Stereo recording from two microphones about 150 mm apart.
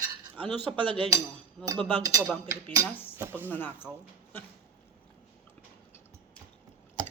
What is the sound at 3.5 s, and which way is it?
Speech, 15° left (ahead or behind).